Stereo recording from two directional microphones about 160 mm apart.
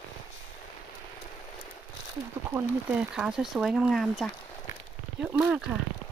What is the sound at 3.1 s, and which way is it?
Speech, 5° right (ahead or behind).